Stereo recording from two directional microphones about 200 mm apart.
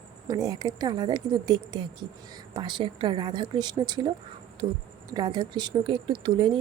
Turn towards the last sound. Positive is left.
turn(degrees=-25)  # may be behind; listen again after turning